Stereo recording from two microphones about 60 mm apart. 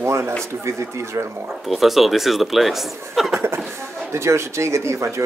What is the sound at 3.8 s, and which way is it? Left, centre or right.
Speech, right.